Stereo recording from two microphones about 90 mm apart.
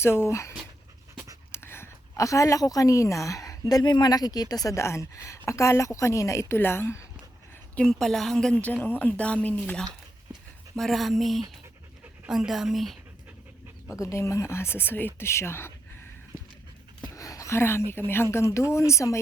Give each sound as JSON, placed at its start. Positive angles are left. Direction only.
{"t": 0.0, "sound": "a woman's voice", "side_deg": 30}
{"t": 1.5, "sound": "a sound", "side_deg": 25}
{"t": 3.7, "sound": "speech", "side_deg": 50}
{"t": 4.7, "sound": "a woman's voice", "side_deg": 30}
{"t": 7.8, "sound": "a woman's voice", "side_deg": 5}
{"t": 8.8, "sound": "speech", "side_deg": 20}
{"t": 10.8, "sound": "a woman's voice", "side_deg": 0}
{"t": 13.9, "sound": "speech", "side_deg": 35}
{"t": 17.2, "sound": "a woman's voice", "side_deg": 35}